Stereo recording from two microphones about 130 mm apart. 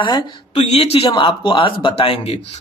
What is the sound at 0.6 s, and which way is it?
Speech, 55° left (ahead or behind).